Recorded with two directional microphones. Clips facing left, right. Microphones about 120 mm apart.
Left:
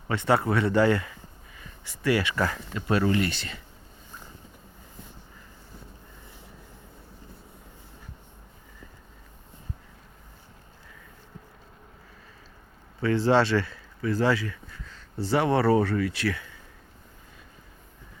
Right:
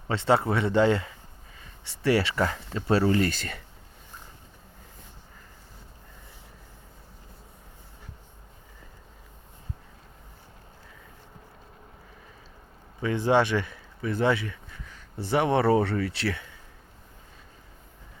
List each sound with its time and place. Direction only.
0.1 s speech: 25° right (ahead or behind); by 3.6 s 45° right (ahead or behind)
13.0 s speech: 15° right (ahead or behind)